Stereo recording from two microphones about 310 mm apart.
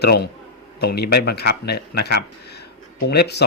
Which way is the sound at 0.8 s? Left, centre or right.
Left.